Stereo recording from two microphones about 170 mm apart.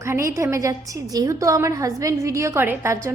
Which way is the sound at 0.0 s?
15° right (ahead or behind).